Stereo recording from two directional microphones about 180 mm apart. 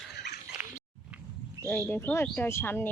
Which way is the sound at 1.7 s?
10° left (ahead or behind).